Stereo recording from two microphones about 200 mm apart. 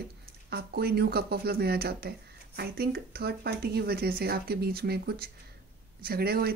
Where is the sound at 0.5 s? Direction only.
55° right (ahead or behind).